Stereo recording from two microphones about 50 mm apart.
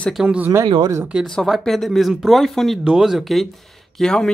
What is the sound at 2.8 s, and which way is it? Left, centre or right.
Speech, centre.